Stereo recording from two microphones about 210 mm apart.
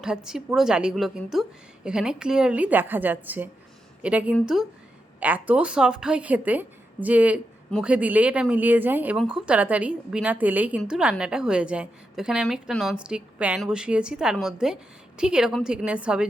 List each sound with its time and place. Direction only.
0.0 s a woman's voice: 5° right (ahead or behind)